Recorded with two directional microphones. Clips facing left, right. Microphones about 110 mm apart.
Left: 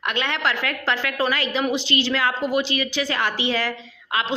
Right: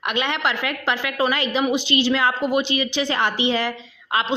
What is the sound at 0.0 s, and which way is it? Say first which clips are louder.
A woman's voice: right 1 dB; 15° right (ahead or behind).